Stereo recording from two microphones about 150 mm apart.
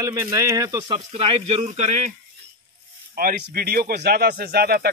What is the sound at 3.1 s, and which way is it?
Speech, 85° right.